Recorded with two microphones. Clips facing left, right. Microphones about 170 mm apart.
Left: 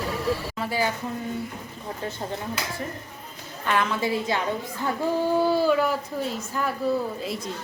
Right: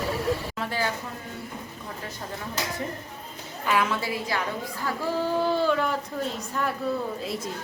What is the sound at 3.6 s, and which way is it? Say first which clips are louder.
Speech: even; 5° right (ahead or behind).